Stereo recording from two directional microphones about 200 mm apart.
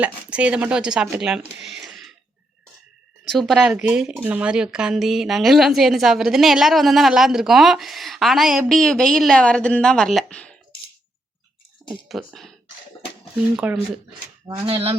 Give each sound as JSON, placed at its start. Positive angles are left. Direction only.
{"t": 0.0, "sound": "speech", "side_deg": -5}
{"t": 3.2, "sound": "speech", "side_deg": 0}
{"t": 12.0, "sound": "speech", "side_deg": 0}
{"t": 13.6, "sound": "speech", "side_deg": -5}
{"t": 14.4, "sound": "speech", "side_deg": -25}